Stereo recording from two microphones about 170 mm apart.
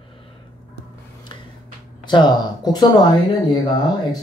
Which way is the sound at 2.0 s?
25° left (ahead or behind).